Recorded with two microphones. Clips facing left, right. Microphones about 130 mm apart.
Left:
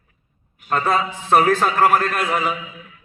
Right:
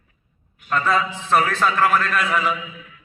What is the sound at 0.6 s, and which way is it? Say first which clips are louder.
Speech: left 1 dB; 40° left (ahead or behind).